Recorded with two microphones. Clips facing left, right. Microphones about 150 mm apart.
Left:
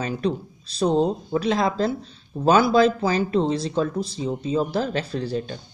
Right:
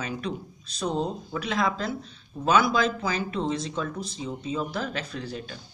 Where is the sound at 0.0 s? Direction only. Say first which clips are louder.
Left 7 dB; 35° left (ahead or behind).